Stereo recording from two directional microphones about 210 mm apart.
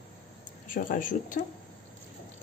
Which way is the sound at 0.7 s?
40° left (ahead or behind).